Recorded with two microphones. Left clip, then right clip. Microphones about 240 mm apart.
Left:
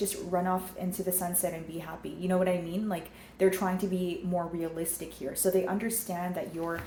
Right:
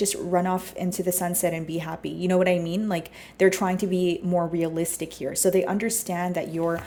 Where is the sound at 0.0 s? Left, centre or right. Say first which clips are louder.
Right 6 dB; right.